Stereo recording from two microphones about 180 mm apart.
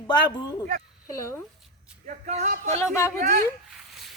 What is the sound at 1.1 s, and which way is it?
Speech, 15° left (ahead or behind).